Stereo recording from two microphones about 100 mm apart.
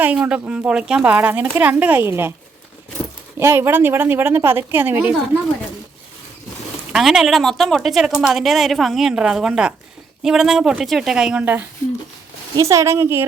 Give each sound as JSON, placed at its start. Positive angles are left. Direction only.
{"t": 0.0, "sound": "a woman's voice", "side_deg": -15}
{"t": 3.3, "sound": "a woman's voice", "side_deg": -25}
{"t": 6.9, "sound": "a woman's voice", "side_deg": -5}
{"t": 12.5, "sound": "a woman's voice", "side_deg": -30}